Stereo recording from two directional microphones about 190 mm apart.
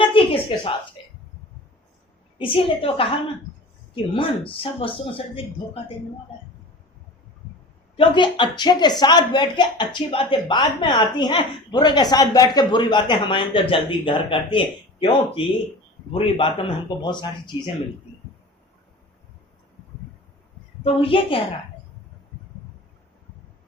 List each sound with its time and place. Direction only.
0.1 s a sound: 25° left (ahead or behind)
2.4 s speech: 30° left (ahead or behind)
7.9 s speech: 25° left (ahead or behind)
20.8 s speech: 30° left (ahead or behind)